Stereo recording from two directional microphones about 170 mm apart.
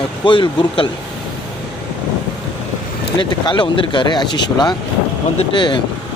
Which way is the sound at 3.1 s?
25° left (ahead or behind).